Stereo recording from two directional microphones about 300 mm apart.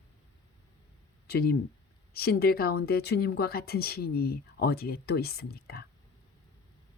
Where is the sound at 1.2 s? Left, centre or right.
Left.